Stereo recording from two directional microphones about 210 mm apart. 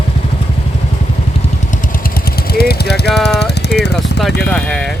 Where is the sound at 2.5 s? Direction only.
50° left (ahead or behind).